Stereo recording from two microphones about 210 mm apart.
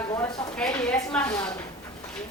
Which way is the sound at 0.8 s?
5° left (ahead or behind).